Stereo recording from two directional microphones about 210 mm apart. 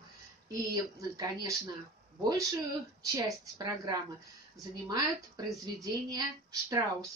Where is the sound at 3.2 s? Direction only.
15° right (ahead or behind).